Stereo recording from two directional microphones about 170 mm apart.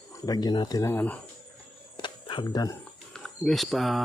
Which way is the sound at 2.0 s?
30° left (ahead or behind).